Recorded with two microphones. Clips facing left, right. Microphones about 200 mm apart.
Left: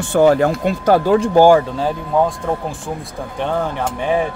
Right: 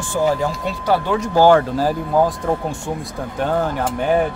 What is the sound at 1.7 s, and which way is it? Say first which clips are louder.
Speech: even; 5° right (ahead or behind).